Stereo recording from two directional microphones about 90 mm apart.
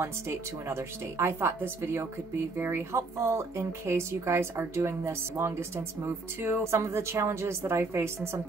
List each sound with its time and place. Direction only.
0.0 s speech: 30° right (ahead or behind)